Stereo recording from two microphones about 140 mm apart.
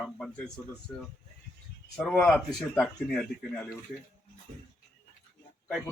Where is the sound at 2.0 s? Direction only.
Centre (ahead or behind).